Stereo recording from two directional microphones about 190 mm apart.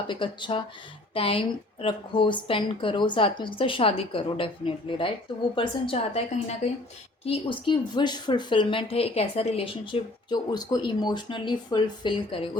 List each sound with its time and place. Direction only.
0.1 s a woman's voice: 25° left (ahead or behind)